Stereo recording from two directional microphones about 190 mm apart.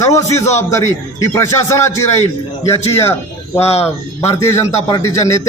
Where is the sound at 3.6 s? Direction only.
35° left (ahead or behind).